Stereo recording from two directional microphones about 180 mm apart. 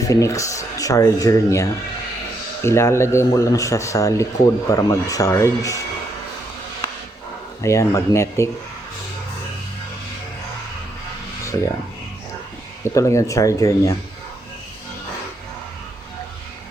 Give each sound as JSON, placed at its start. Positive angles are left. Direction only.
{"t": 0.0, "sound": "speech", "side_deg": 20}
{"t": 7.6, "sound": "speech", "side_deg": 15}
{"t": 11.5, "sound": "speech", "side_deg": 20}
{"t": 12.8, "sound": "speech", "side_deg": 15}